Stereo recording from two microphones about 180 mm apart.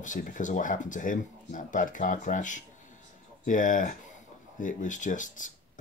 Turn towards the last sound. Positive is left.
turn(degrees=45)  # may be behind; listen again after turning